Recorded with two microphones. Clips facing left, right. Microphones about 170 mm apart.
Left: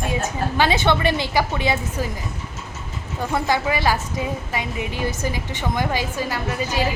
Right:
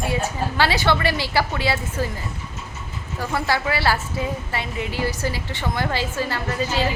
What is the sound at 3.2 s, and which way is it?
A woman's voice, 20° left (ahead or behind).